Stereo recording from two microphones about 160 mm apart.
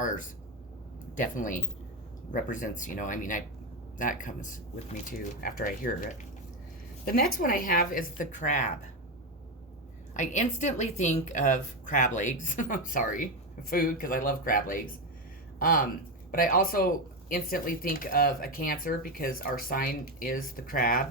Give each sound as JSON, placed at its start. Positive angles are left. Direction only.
{"t": 0.0, "sound": "a woman's voice", "side_deg": 55}
{"t": 10.2, "sound": "a woman's voice", "side_deg": 50}